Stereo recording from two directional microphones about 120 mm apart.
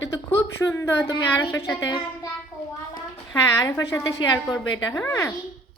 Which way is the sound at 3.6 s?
30° left (ahead or behind).